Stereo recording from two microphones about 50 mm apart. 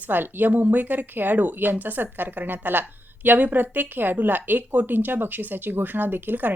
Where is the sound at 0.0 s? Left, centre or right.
Right.